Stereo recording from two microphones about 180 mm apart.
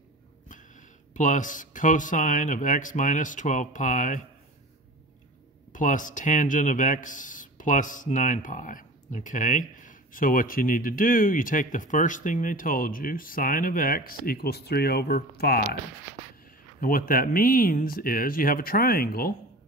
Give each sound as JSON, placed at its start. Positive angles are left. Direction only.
{"t": 0.5, "sound": "speech", "side_deg": 45}
{"t": 5.7, "sound": "speech", "side_deg": 45}
{"t": 16.8, "sound": "speech", "side_deg": 50}